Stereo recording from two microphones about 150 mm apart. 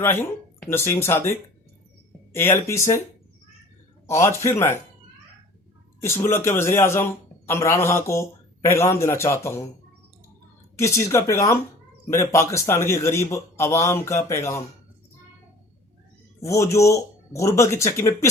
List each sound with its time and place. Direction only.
0.0 s a man's voice: 15° left (ahead or behind)
4.1 s a man's voice: 20° left (ahead or behind)
6.2 s a man's voice: 15° left (ahead or behind)
10.8 s a man's voice: 20° left (ahead or behind)
16.4 s a man's voice: 20° left (ahead or behind)